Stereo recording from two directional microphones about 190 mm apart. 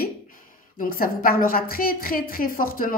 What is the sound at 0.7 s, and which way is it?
Speech, 50° left (ahead or behind).